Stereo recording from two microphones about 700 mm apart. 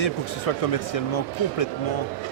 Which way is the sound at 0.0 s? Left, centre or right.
Left.